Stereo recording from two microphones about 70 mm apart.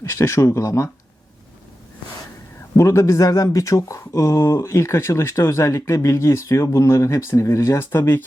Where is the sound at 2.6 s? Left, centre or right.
Left.